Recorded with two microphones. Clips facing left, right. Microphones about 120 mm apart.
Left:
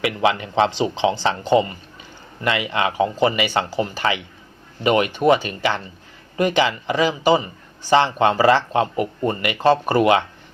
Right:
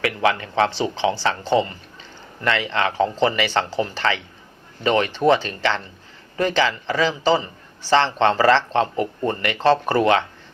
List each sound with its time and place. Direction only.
0.0 s speech: 20° left (ahead or behind)